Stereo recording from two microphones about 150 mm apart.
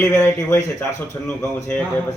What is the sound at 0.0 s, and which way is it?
Speech, 20° left (ahead or behind).